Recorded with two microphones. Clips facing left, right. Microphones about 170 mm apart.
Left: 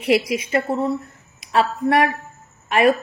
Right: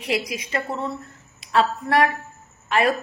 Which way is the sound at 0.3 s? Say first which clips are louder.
Left 7 dB; 25° left (ahead or behind).